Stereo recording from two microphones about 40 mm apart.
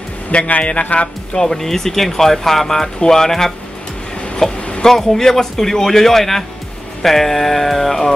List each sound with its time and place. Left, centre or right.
0.3 s speech: left
1.0 s speech: centre
4.6 s a sound: left
4.8 s speech: centre